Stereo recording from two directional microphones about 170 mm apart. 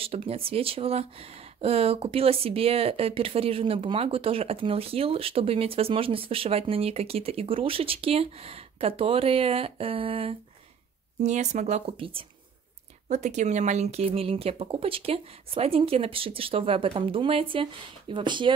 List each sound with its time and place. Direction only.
0.0 s speech: 35° right (ahead or behind)
11.1 s speech: 45° right (ahead or behind)
13.1 s speech: 45° right (ahead or behind)